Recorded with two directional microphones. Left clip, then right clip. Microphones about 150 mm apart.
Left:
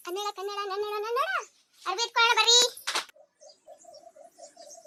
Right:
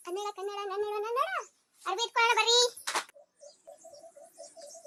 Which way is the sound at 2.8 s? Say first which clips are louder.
Left 2 dB; 25° right (ahead or behind).